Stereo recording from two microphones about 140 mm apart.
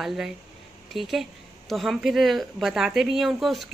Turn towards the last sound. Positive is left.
turn(degrees=0)  # may be behind; listen again after turning